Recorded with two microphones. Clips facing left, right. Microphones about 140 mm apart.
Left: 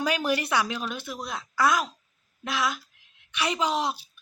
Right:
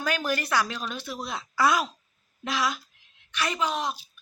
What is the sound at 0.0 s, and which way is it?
Speech, 25° left (ahead or behind).